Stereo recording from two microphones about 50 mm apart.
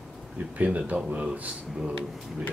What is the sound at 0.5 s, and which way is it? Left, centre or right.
Speech, right.